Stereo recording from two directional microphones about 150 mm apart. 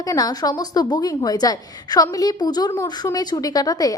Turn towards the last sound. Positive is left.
turn(degrees=25)  # may be behind; listen again after turning